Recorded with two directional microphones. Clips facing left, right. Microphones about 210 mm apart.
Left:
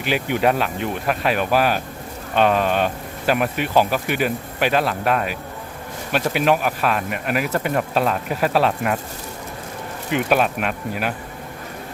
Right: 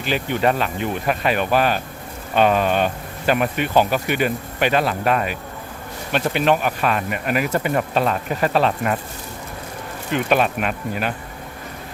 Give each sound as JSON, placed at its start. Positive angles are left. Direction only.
{"t": 0.0, "sound": "speech", "side_deg": 10}
{"t": 10.1, "sound": "speech", "side_deg": 5}